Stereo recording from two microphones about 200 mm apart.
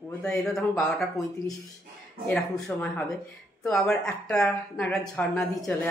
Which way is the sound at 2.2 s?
5° left (ahead or behind).